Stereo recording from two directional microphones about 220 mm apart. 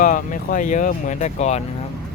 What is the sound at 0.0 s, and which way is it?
Speech, 35° left (ahead or behind).